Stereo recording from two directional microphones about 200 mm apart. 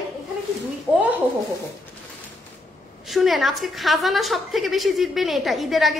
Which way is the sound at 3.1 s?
Centre (ahead or behind).